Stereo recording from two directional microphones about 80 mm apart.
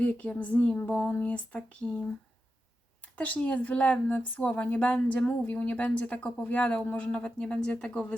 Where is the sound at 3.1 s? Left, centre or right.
Centre.